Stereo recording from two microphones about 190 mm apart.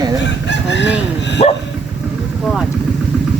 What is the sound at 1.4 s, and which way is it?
Dog, 30° left (ahead or behind).